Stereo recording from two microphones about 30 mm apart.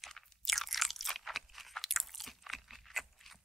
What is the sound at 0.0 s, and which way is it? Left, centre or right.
Crunch, centre.